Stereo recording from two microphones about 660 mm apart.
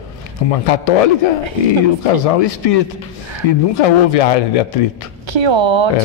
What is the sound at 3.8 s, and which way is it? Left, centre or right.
A man's voice, left.